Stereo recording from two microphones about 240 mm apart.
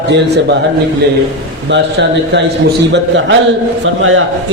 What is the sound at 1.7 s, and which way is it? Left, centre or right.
Speech, right.